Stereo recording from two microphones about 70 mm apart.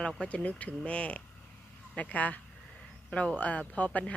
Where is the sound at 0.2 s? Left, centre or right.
Centre.